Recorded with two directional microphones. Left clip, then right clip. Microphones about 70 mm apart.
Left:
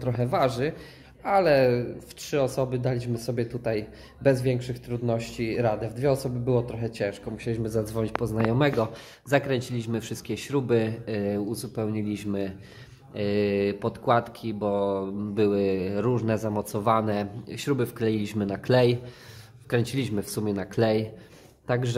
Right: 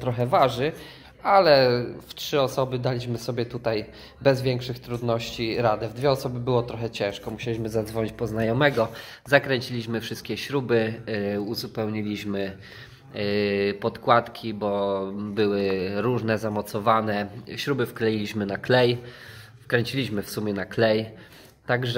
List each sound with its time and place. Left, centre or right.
0.0 s a man's voice: left
5.1 s speech: left
7.6 s speech: left
7.9 s a man's voice: left
13.1 s speech: left
16.5 s speech: left